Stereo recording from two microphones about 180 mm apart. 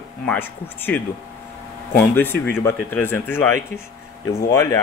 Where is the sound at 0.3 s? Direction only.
10° left (ahead or behind).